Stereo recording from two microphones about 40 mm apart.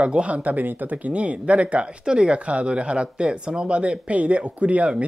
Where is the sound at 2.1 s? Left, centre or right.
Right.